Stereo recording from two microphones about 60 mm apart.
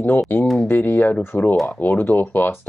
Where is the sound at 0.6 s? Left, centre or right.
Left.